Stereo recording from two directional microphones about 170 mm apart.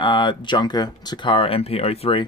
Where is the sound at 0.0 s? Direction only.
30° left (ahead or behind).